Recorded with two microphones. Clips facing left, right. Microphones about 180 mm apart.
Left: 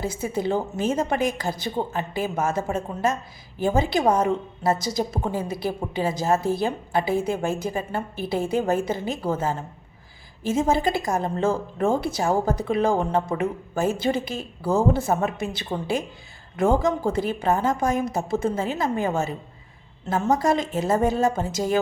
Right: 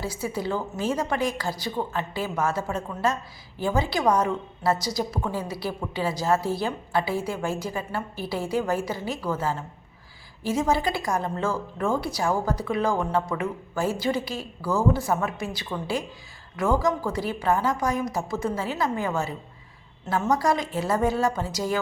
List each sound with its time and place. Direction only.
0.0 s a woman's voice: 20° left (ahead or behind)
20.3 s a woman's voice: 20° left (ahead or behind)